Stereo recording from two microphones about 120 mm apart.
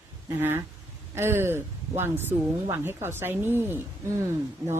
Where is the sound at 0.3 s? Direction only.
15° right (ahead or behind).